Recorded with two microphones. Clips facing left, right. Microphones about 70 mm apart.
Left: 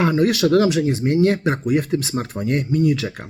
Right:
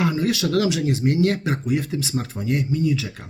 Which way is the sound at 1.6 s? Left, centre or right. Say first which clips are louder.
Left 4 dB; left.